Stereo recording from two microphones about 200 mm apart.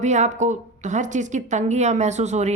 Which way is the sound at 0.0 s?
35° right (ahead or behind).